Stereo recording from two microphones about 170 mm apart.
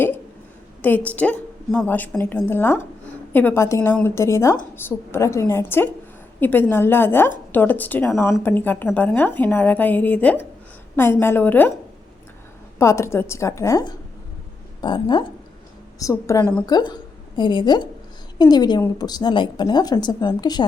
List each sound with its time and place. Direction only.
0.8 s a woman's voice: 10° left (ahead or behind)
12.8 s a woman's voice: 15° left (ahead or behind)